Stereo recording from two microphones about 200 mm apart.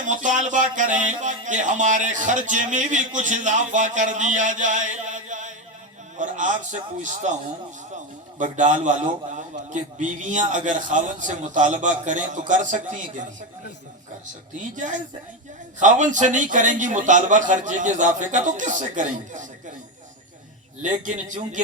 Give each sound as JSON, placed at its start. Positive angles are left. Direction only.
{"t": 0.0, "sound": "speech", "side_deg": -40}
{"t": 14.8, "sound": "speech", "side_deg": -40}
{"t": 20.8, "sound": "speech", "side_deg": -40}